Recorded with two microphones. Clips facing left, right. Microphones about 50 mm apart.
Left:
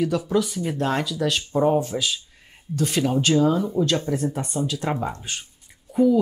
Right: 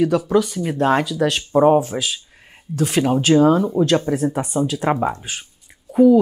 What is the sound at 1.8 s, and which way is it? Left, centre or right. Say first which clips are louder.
Speech: right 3 dB; centre.